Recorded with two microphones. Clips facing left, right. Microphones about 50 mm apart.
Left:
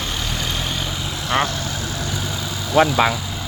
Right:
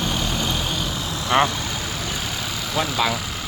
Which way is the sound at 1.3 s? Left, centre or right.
Centre.